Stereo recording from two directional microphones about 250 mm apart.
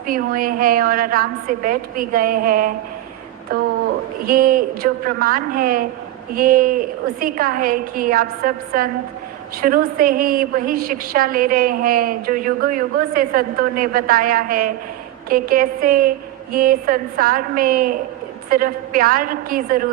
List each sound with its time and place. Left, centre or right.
0.1 s a woman's voice: right